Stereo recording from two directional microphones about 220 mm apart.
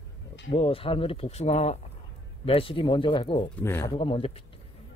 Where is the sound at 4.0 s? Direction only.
25° left (ahead or behind).